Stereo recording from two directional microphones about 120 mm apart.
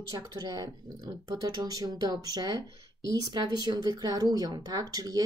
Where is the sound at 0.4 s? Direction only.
30° right (ahead or behind).